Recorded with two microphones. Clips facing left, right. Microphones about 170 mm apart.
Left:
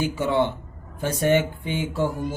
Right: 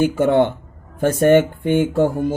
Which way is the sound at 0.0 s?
55° right (ahead or behind).